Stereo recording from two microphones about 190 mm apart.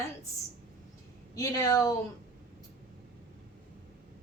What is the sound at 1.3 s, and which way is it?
Speech, 20° left (ahead or behind).